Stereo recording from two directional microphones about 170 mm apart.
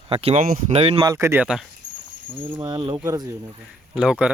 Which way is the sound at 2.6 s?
25° right (ahead or behind).